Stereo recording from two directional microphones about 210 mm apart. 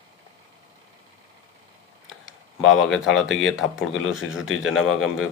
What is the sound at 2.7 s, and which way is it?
Speech, centre (ahead or behind).